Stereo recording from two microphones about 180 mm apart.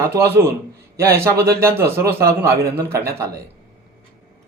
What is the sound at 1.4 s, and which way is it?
Speech, 15° right (ahead or behind).